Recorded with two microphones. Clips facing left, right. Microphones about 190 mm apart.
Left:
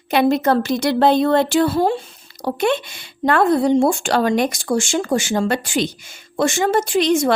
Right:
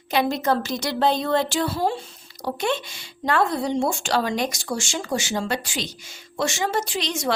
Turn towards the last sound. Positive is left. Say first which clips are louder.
# left 10 dB
turn(degrees=55)  # may be behind; listen again after turning